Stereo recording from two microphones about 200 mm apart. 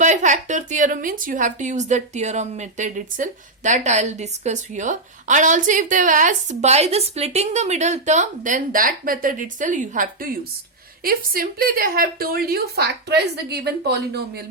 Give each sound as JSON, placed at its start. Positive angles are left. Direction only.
{"t": 0.0, "sound": "a woman's voice", "side_deg": -40}